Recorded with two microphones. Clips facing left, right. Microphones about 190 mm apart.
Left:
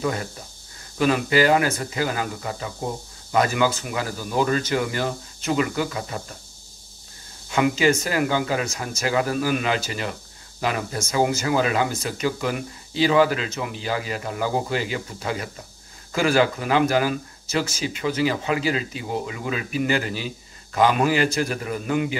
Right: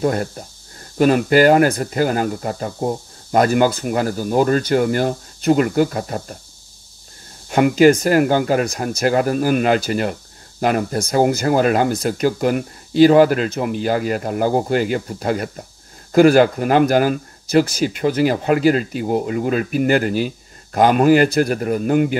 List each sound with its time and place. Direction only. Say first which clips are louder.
0.0 s speech: right 7 dB; 50° right (ahead or behind)
7.4 s speech: right 8 dB; 55° right (ahead or behind)